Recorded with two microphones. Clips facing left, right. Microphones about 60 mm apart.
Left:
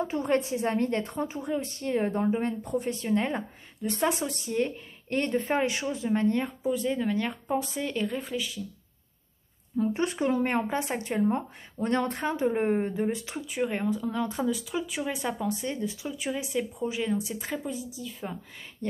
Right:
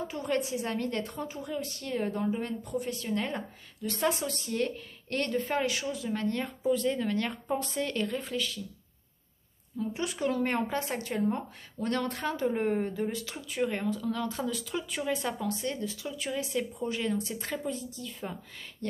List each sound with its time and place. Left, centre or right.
0.0 s a woman's voice: left; by 8.5 s centre
9.8 s a woman's voice: left; by 18.9 s centre